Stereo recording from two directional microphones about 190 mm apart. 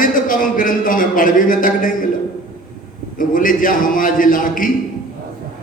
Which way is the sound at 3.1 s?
45° left (ahead or behind).